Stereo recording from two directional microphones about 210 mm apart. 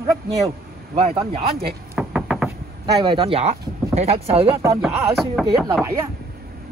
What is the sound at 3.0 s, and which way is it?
Speech, 25° right (ahead or behind).